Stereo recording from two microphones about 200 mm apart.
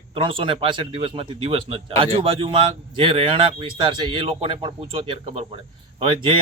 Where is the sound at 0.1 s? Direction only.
25° right (ahead or behind).